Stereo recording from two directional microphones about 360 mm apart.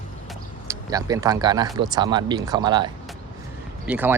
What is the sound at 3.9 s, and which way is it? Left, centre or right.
Speech, centre.